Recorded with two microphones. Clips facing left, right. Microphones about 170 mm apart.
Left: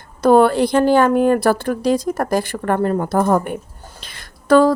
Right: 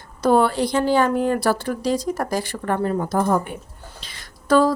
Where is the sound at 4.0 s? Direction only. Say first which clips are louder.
Left 2 dB; 55° left (ahead or behind).